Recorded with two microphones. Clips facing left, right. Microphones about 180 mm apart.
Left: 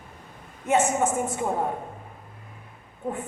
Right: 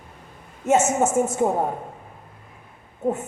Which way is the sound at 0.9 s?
25° right (ahead or behind).